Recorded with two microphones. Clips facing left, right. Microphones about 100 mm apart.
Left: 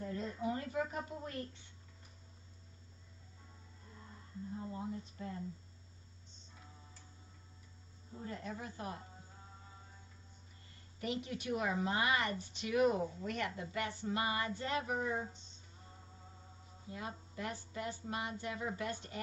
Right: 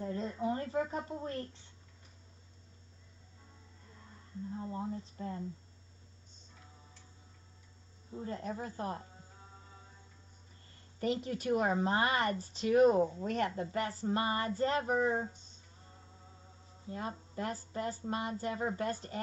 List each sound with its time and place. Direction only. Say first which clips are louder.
0.0 s a woman's voice: right 4 dB; 30° right (ahead or behind)
4.7 s a woman's voice: right 4 dB; 30° right (ahead or behind)
8.3 s a woman's voice: right 5 dB; 35° right (ahead or behind)
11.0 s a woman's voice: right 6 dB; 35° right (ahead or behind)
16.9 s a woman's voice: right 5 dB; 35° right (ahead or behind)